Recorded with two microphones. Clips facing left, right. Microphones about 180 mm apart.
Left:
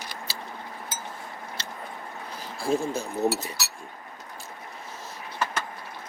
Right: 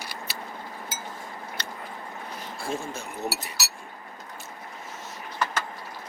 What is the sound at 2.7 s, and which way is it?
Speech, 35° left (ahead or behind).